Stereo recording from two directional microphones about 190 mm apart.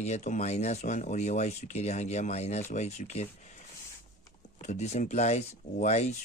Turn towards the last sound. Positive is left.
turn(degrees=35)  # may be behind; listen again after turning